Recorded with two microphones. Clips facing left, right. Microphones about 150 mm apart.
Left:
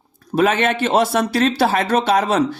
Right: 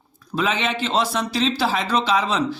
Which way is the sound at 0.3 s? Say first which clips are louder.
Left 6 dB; 55° left (ahead or behind).